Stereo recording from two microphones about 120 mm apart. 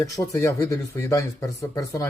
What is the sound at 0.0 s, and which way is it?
Speech, 25° left (ahead or behind).